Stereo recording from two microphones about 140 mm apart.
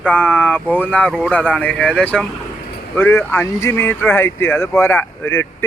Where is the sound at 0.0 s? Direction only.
10° left (ahead or behind).